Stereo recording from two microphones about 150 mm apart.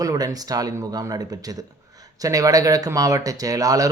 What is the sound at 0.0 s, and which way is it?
Speech, 25° right (ahead or behind).